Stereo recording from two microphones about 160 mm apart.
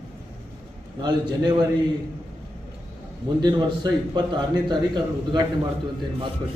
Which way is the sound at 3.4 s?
25° right (ahead or behind).